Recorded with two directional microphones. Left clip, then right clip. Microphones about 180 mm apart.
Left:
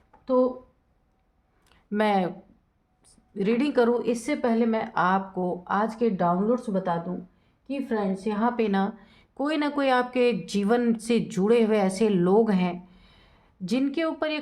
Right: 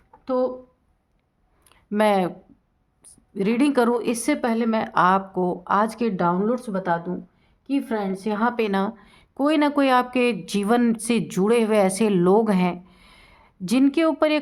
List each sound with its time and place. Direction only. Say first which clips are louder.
1.7 s speech: right 4 dB; 30° right (ahead or behind)
3.3 s a woman's voice: right 3 dB; 35° right (ahead or behind)